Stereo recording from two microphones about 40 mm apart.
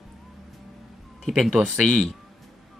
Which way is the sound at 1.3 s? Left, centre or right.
Centre.